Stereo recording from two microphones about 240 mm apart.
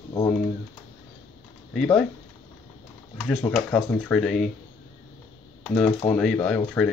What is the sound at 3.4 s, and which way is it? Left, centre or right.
Speech, centre.